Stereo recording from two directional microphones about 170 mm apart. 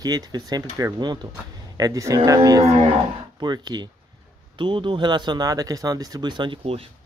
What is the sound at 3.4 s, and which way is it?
Speech, 25° right (ahead or behind).